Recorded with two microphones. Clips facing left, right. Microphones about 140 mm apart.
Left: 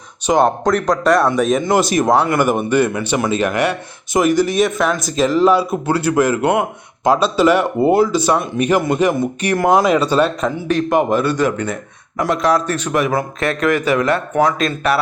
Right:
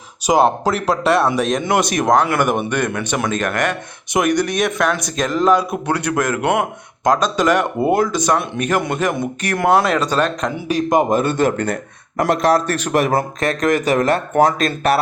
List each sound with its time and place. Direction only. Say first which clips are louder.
0.3 s speech: left 1 dB; 5° right (ahead or behind)
10.7 s speech: even; 15° right (ahead or behind)
11.1 s speech: even; 50° right (ahead or behind)